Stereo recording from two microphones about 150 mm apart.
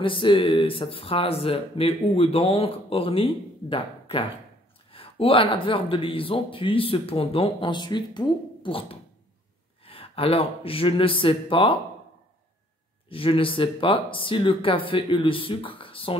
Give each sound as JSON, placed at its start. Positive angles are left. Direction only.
{"t": 0.0, "sound": "speech", "side_deg": 35}
{"t": 13.1, "sound": "speech", "side_deg": 35}